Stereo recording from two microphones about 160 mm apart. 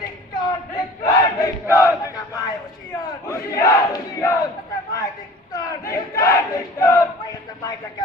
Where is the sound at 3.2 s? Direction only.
20° left (ahead or behind).